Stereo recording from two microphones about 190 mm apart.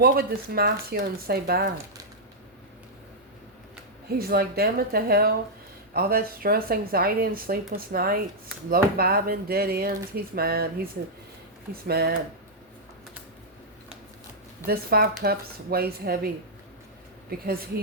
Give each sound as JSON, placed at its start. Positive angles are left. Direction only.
{"t": 0.0, "sound": "speech", "side_deg": -55}
{"t": 4.2, "sound": "speech", "side_deg": -55}
{"t": 11.7, "sound": "speech", "side_deg": -55}
{"t": 14.7, "sound": "speech", "side_deg": -55}
{"t": 17.3, "sound": "speech", "side_deg": -50}